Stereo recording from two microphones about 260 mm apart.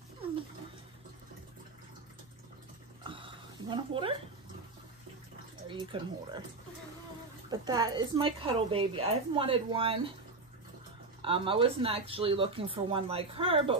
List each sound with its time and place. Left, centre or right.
3.0 s dog: centre
5.7 s speech: centre
7.4 s a woman's voice: centre
11.2 s a woman's voice: centre